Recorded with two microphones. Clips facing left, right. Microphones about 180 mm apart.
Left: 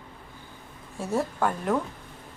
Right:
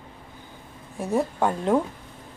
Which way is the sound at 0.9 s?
15° right (ahead or behind).